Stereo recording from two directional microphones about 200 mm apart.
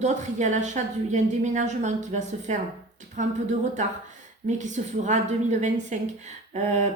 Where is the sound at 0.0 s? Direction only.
35° right (ahead or behind).